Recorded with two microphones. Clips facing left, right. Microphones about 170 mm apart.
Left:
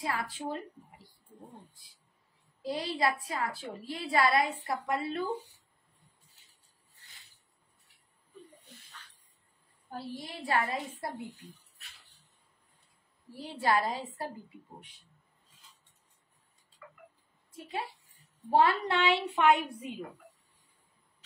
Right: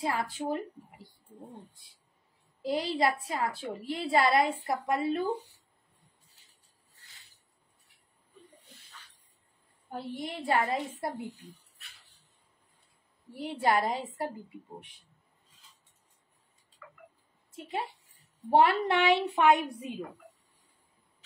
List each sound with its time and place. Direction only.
0.0 s a woman's voice: 25° right (ahead or behind)
2.6 s a woman's voice: 25° right (ahead or behind)
9.8 s a woman's voice: 20° right (ahead or behind)
13.4 s a woman's voice: 20° right (ahead or behind)
17.5 s a woman's voice: 25° right (ahead or behind)